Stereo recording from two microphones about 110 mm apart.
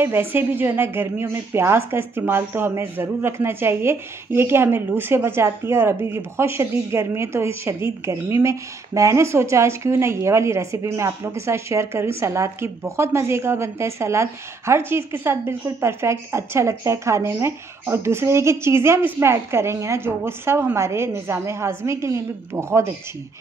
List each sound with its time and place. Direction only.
0.0 s a woman's voice: 20° right (ahead or behind)